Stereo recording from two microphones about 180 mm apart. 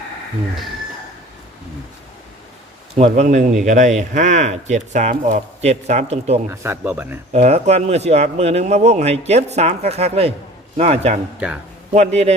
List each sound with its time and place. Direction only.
3.0 s speech: 40° right (ahead or behind)
6.5 s speech: 15° right (ahead or behind)
7.3 s speech: 35° right (ahead or behind)